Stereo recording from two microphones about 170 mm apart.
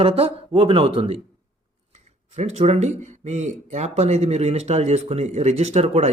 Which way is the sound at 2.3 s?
40° right (ahead or behind).